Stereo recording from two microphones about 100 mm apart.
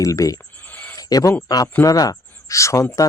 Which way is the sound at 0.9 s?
40° left (ahead or behind).